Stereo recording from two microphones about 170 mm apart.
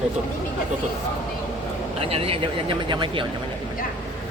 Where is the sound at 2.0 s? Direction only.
35° right (ahead or behind).